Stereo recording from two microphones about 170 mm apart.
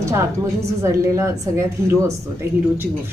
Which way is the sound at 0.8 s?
20° right (ahead or behind).